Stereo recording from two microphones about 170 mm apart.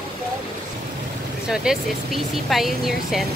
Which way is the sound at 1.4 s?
5° right (ahead or behind).